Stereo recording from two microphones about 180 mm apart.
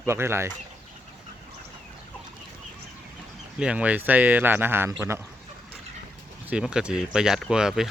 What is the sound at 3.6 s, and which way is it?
Speech, 5° right (ahead or behind).